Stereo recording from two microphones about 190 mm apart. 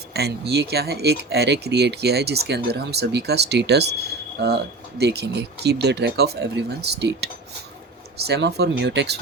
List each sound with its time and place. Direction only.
0.1 s speech: 60° right (ahead or behind)